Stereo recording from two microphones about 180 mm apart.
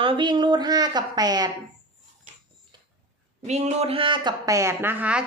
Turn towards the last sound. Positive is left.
turn(degrees=-10)  # may be behind; listen again after turning